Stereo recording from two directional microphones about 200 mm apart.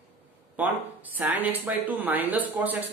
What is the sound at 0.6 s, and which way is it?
Speech, 10° right (ahead or behind).